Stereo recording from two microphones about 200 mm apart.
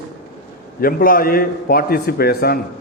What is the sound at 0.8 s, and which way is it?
A man's voice, 45° left (ahead or behind).